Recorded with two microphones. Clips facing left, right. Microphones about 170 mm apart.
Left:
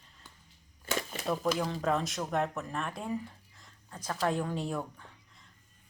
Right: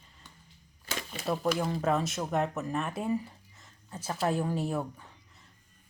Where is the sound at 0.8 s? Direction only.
50° left (ahead or behind).